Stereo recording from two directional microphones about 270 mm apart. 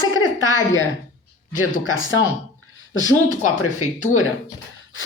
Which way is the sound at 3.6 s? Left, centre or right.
Left.